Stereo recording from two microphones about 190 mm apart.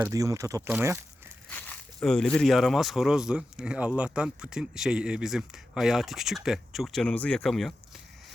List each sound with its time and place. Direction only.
0.1 s speech: 15° right (ahead or behind)
1.5 s speech: 10° left (ahead or behind)